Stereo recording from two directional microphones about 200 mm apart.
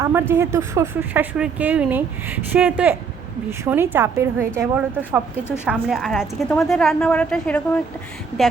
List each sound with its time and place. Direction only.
0.0 s a woman's voice: 10° right (ahead or behind)
5.6 s a woman's voice: centre (ahead or behind)